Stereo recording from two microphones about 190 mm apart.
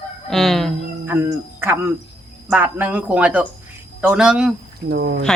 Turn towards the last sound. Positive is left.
turn(degrees=-55)  # may be behind; listen again after turning